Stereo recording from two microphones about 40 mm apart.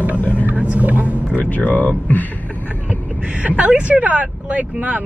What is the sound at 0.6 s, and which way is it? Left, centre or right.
Speech, right.